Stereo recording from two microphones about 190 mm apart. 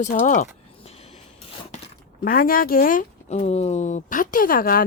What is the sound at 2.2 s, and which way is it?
Speech, 50° left (ahead or behind).